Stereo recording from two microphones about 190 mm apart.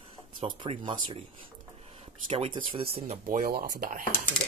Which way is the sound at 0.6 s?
25° right (ahead or behind).